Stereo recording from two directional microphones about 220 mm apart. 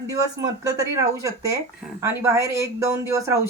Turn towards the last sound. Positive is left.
turn(degrees=-15)  # may be behind; listen again after turning